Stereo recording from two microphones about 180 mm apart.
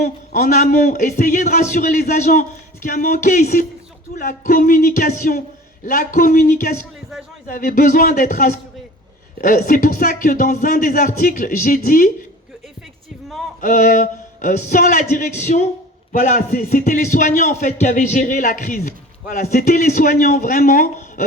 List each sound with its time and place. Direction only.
0.3 s a man's voice: 50° left (ahead or behind)
13.6 s a man's voice: 45° left (ahead or behind)